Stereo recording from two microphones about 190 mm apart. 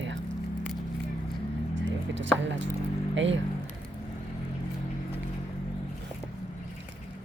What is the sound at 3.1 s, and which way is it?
Speech, 75° right (ahead or behind).